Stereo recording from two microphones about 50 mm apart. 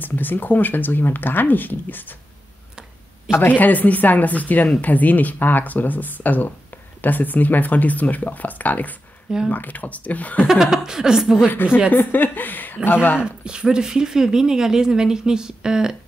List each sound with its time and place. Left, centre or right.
0.0 s speech: left
3.3 s speech: left
3.5 s speech: left
10.5 s speech: centre
11.5 s speech: left
13.2 s speech: centre